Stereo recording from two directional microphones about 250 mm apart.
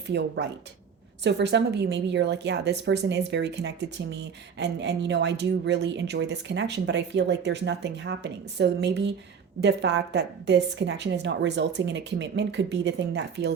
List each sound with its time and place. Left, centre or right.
0.1 s a woman's voice: right